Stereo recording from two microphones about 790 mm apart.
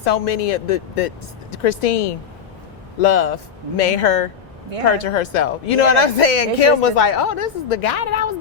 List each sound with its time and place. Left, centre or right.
0.0 s speech: left